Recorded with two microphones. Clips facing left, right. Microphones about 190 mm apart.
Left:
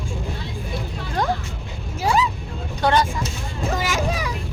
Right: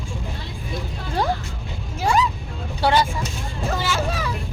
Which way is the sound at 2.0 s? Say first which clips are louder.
Even; 10° left (ahead or behind).